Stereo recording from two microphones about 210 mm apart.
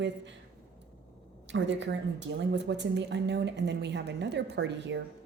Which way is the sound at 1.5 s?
60° right (ahead or behind).